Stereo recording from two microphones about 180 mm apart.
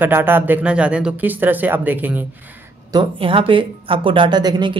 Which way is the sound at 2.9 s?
30° right (ahead or behind).